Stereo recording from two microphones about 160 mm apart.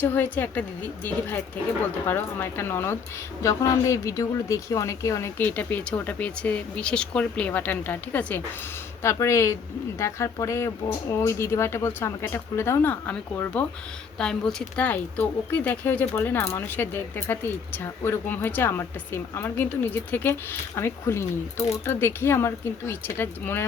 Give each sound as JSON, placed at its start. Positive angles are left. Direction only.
{"t": 0.0, "sound": "speech", "side_deg": 10}